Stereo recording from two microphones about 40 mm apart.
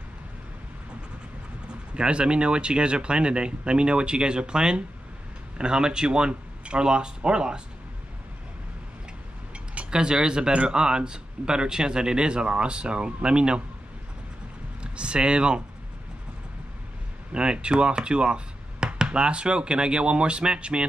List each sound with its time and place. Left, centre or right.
2.0 s speech: right
9.8 s speech: centre
14.8 s speech: right
17.3 s speech: right